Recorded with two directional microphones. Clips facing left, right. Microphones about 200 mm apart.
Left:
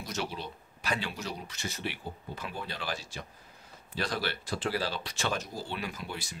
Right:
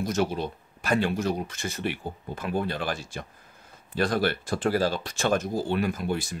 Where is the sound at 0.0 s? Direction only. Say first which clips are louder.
Right 10 dB; 50° right (ahead or behind).